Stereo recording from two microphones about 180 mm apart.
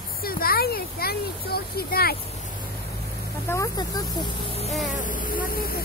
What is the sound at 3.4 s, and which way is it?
Speech, 15° left (ahead or behind).